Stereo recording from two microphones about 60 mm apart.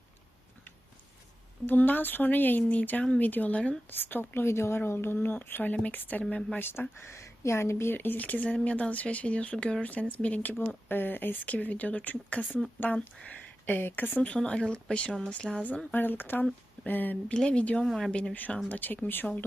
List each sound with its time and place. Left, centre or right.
1.6 s speech: left
3.8 s speech: left
7.9 s speech: left
10.8 s speech: left
14.4 s speech: centre
15.9 s speech: left
17.3 s speech: centre
17.8 s speech: centre
18.1 s speech: centre